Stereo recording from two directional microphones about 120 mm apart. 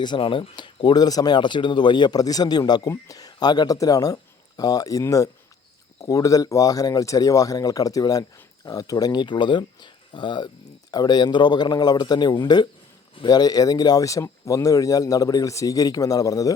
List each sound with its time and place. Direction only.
0.0 s speech: 40° left (ahead or behind)